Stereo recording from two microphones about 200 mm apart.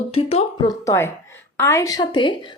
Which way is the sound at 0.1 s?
30° left (ahead or behind).